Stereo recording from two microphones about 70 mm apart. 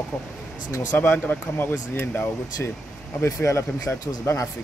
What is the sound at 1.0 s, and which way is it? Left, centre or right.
Speech, left.